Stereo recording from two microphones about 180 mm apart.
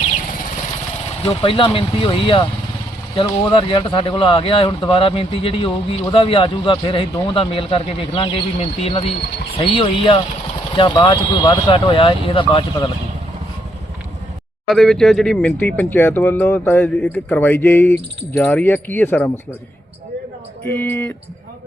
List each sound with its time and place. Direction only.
1.1 s speech: 35° left (ahead or behind)
14.7 s speech: centre (ahead or behind)
20.7 s speech: 10° left (ahead or behind)